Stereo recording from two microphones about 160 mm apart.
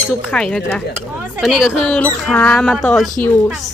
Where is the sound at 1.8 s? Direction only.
5° left (ahead or behind).